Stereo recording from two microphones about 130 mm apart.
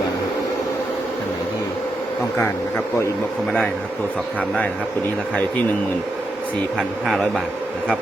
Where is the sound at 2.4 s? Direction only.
20° left (ahead or behind).